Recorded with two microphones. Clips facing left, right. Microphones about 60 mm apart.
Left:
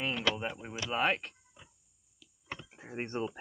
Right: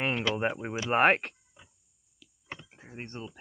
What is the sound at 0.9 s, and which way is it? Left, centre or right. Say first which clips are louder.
Speech: right 8 dB; right.